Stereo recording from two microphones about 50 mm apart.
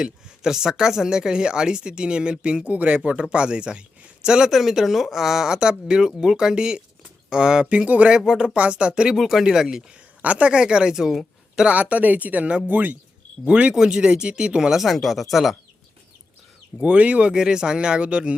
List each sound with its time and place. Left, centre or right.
0.0 s speech: centre; by 8.1 s right
8.2 s speech: centre
8.5 s speech: right
9.1 s speech: centre
10.2 s speech: right; by 11.2 s centre
11.5 s speech: right; by 15.5 s centre
16.8 s speech: right